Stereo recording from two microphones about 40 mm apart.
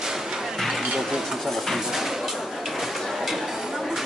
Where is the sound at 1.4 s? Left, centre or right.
Centre.